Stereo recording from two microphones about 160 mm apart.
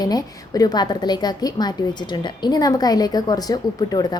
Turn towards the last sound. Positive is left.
turn(degrees=25)  # may be behind; listen again after turning